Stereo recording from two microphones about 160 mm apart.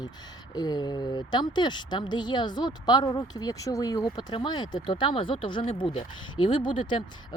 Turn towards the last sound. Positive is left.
turn(degrees=30)  # may be behind; listen again after turning